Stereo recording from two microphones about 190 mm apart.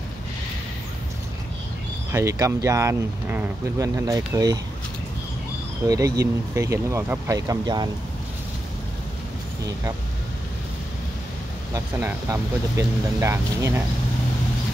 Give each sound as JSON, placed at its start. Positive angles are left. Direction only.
{"t": 2.1, "sound": "speech", "side_deg": -15}
{"t": 5.9, "sound": "speech", "side_deg": -20}
{"t": 11.7, "sound": "speech", "side_deg": -15}